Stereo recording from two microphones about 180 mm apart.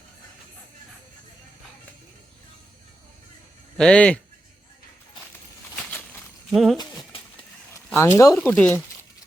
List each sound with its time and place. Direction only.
3.8 s speech: 5° left (ahead or behind)
6.5 s speech: centre (ahead or behind)
7.9 s speech: 15° left (ahead or behind)
8.4 s speech: 5° left (ahead or behind)